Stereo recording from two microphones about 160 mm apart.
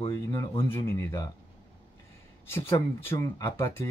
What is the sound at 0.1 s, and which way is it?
A man's voice, 20° left (ahead or behind).